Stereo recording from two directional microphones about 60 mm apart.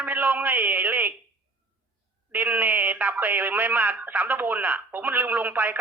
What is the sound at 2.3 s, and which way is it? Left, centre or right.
Speech, right.